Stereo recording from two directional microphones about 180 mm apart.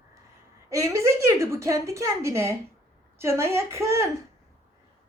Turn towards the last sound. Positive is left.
turn(degrees=-15)  # may be behind; listen again after turning